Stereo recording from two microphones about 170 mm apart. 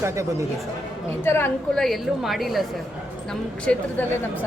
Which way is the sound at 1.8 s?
Centre (ahead or behind).